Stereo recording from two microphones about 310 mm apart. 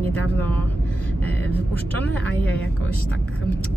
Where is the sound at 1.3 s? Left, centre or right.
Centre.